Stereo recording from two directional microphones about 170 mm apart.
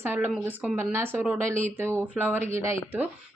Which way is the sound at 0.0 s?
10° right (ahead or behind).